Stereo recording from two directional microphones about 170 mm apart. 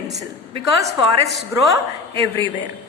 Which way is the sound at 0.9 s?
Centre (ahead or behind).